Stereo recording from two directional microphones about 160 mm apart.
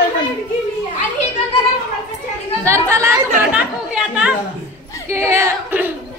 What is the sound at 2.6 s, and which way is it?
A woman's voice, 20° right (ahead or behind).